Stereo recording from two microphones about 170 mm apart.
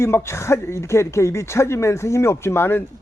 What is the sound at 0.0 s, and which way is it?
Speech, 15° left (ahead or behind).